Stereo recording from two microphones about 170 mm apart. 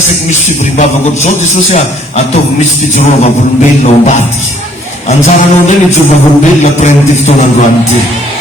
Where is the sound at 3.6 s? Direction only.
45° left (ahead or behind).